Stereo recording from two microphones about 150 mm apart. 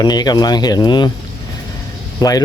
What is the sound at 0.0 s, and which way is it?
Speech, 25° left (ahead or behind).